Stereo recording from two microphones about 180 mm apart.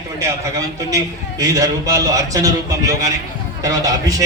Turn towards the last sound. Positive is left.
turn(degrees=-20)  # may be behind; listen again after turning